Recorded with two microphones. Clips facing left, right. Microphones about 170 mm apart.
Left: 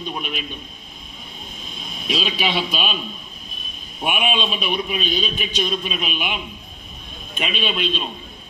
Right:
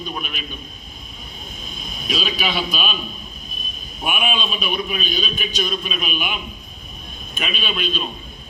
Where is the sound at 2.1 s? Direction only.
25° left (ahead or behind).